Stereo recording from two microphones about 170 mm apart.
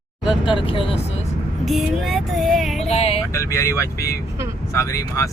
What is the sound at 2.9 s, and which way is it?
Speech, 35° left (ahead or behind).